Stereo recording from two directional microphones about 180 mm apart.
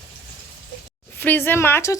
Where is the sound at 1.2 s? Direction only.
10° left (ahead or behind).